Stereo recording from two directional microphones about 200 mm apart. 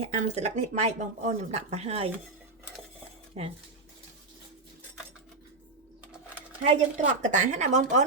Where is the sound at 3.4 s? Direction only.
30° right (ahead or behind).